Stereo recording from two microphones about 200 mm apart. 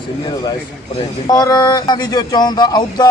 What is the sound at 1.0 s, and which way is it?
A man's voice, 20° left (ahead or behind).